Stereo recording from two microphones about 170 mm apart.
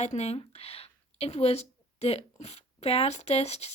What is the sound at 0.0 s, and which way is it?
Speech, 40° left (ahead or behind).